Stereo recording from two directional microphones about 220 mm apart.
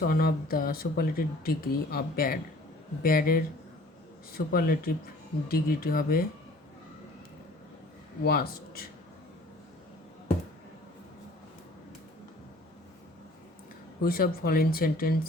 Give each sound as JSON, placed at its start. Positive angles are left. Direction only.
{"t": 0.0, "sound": "speech", "side_deg": 45}
{"t": 8.2, "sound": "speech", "side_deg": 45}
{"t": 14.0, "sound": "speech", "side_deg": 40}